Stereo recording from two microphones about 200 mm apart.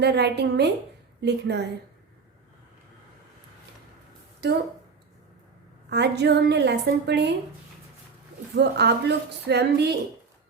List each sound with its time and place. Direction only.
0.0 s a woman's voice: 55° right (ahead or behind)
4.4 s a woman's voice: 55° right (ahead or behind)
5.9 s a woman's voice: 55° right (ahead or behind)
8.5 s a woman's voice: 55° right (ahead or behind)